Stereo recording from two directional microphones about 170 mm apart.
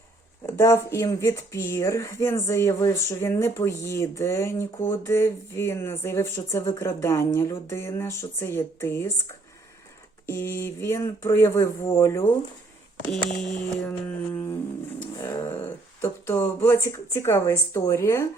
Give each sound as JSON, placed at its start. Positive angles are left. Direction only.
{"t": 0.4, "sound": "speech", "side_deg": 15}
{"t": 10.2, "sound": "speech", "side_deg": 15}
{"t": 13.1, "sound": "a sound", "side_deg": 0}
{"t": 15.2, "sound": "speech", "side_deg": 20}